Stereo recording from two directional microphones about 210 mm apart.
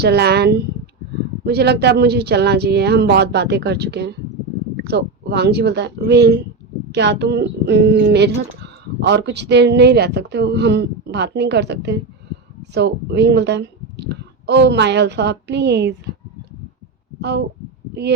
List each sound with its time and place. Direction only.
0.0 s speech: 50° right (ahead or behind)
17.2 s speech: 55° right (ahead or behind)